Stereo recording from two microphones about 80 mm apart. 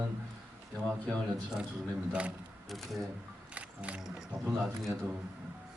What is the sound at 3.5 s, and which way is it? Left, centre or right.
Music, centre.